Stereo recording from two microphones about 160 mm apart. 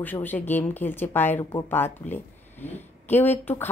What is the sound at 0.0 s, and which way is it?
Speech, 10° left (ahead or behind).